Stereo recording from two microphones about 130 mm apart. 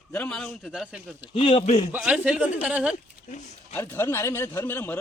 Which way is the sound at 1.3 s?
45° left (ahead or behind).